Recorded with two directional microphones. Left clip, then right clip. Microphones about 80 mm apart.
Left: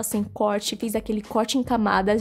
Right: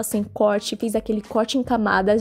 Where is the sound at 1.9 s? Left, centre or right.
Right.